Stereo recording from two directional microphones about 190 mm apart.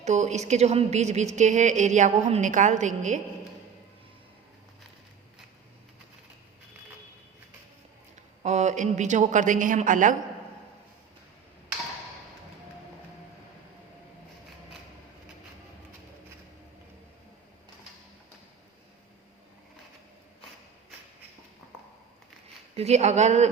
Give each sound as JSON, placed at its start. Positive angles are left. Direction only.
{"t": 0.0, "sound": "a woman's voice", "side_deg": -40}
{"t": 8.4, "sound": "a woman's voice", "side_deg": -40}
{"t": 22.7, "sound": "a woman's voice", "side_deg": -35}